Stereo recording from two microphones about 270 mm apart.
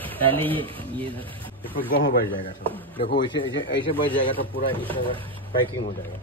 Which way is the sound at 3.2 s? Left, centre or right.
Centre.